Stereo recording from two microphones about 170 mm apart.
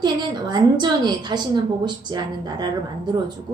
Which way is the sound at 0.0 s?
25° right (ahead or behind).